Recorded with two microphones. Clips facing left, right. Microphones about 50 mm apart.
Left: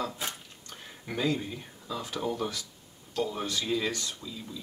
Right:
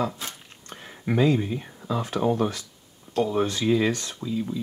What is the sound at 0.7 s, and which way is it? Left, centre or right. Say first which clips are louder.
Speech: right 11 dB; right.